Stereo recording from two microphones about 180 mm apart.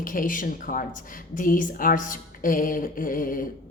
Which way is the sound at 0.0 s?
50° left (ahead or behind).